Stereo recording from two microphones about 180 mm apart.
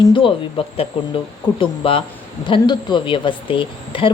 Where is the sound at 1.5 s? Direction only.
30° left (ahead or behind).